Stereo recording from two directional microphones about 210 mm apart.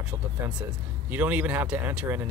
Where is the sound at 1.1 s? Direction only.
10° right (ahead or behind).